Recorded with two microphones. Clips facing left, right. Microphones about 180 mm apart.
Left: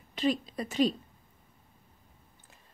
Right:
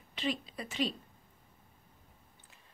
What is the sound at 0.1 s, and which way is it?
Speech, 40° left (ahead or behind).